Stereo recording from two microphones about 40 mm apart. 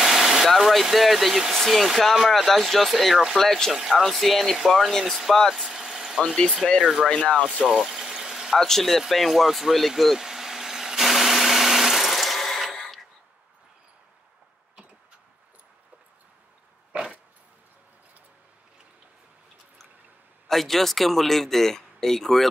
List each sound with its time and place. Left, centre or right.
0.0 s vehicle: centre
0.6 s speech: centre
3.3 s speech: centre
3.7 s speech: centre
4.0 s speech: centre
5.7 s vehicle: centre
6.2 s speech: centre
6.8 s speech: centre
7.1 s speech: left
7.6 s vehicle: centre
8.5 s speech: centre
9.1 s vehicle: centre
16.9 s dog: right
20.4 s speech: centre